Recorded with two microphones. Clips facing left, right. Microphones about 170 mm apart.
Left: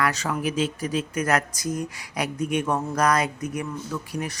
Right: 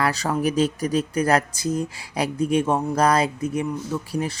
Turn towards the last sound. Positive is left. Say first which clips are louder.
# right 4 dB
turn(degrees=-30)  # may be behind; listen again after turning